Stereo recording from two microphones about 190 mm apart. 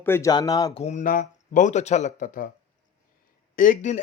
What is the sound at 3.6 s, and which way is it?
Speech, 40° left (ahead or behind).